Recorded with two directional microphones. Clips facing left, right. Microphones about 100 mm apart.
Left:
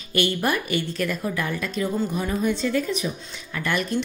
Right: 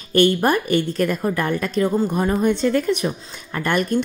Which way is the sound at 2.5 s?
60° right (ahead or behind).